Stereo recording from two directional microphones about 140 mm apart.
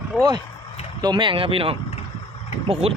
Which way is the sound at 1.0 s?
30° right (ahead or behind).